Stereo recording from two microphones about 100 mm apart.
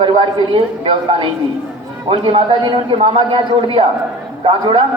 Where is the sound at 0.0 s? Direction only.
60° right (ahead or behind).